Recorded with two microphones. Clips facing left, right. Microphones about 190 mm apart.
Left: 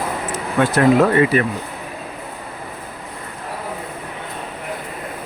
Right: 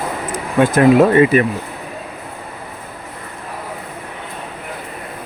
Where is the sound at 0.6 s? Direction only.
15° right (ahead or behind).